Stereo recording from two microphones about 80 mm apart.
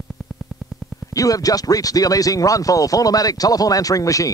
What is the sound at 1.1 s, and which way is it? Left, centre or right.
Speech, left.